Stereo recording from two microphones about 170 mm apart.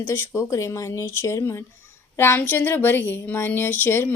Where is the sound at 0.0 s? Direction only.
15° left (ahead or behind).